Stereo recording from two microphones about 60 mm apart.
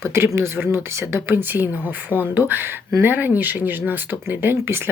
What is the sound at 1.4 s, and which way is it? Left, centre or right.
Speech, right.